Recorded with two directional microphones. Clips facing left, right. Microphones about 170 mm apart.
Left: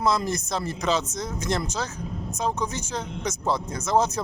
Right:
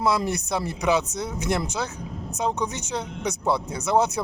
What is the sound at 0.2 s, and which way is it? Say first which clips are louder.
Speech: right 2 dB; 15° right (ahead or behind).